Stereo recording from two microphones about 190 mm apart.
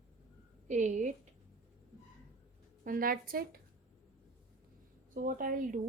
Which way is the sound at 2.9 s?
50° right (ahead or behind).